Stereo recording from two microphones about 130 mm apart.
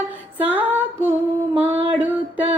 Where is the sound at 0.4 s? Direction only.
15° right (ahead or behind).